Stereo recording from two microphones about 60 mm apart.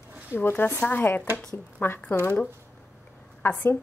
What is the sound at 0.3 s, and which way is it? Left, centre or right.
Speech, left.